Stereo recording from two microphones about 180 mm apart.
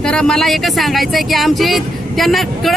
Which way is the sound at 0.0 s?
5° left (ahead or behind).